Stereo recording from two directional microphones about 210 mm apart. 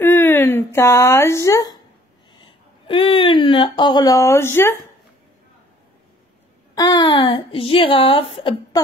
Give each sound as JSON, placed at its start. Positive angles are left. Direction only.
{"t": 0.0, "sound": "a sound", "side_deg": 10}
{"t": 2.3, "sound": "speech", "side_deg": 25}
{"t": 6.7, "sound": "speech", "side_deg": 20}